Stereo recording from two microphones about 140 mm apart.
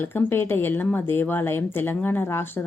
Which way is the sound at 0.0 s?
15° left (ahead or behind).